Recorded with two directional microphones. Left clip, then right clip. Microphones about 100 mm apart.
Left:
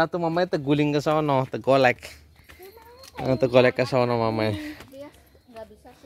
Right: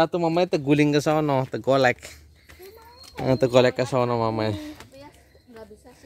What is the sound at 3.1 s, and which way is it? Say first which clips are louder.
Speech: right 1 dB; 30° right (ahead or behind).